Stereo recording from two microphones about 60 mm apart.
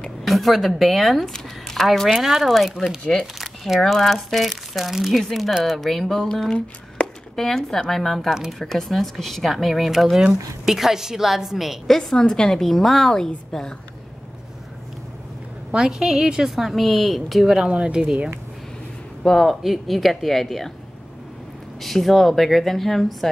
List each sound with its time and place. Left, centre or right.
0.3 s a woman's voice: centre
3.3 s a woman's voice: centre
7.0 s a sound: centre
7.3 s a woman's voice: centre
8.3 s speech: centre
8.5 s a woman's voice: centre
15.7 s a woman's voice: centre
17.6 s speech: centre
19.2 s a woman's voice: centre
21.8 s a woman's voice: centre